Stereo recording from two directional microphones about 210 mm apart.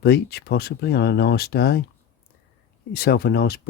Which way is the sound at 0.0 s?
50° left (ahead or behind).